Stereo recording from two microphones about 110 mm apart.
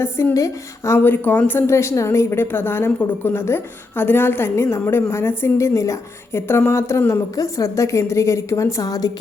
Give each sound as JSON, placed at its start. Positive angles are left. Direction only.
{"t": 0.0, "sound": "a woman's voice", "side_deg": 25}
{"t": 0.9, "sound": "a woman's voice", "side_deg": 15}